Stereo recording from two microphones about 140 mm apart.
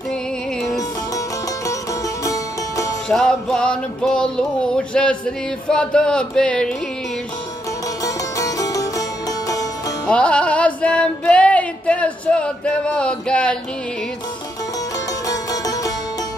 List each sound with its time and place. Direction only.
2.2 s music: 25° left (ahead or behind)
3.1 s music: 5° left (ahead or behind)
8.0 s music: 25° left (ahead or behind)
10.0 s music: 10° left (ahead or behind)
15.2 s music: 25° left (ahead or behind)